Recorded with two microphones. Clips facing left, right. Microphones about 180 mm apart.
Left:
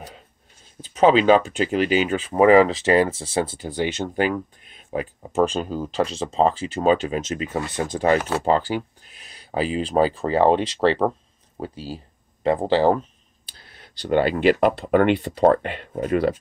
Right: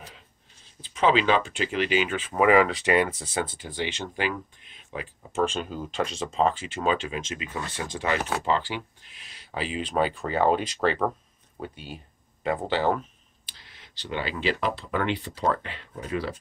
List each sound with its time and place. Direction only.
0.8 s speech: 40° left (ahead or behind)
14.0 s speech: 55° left (ahead or behind)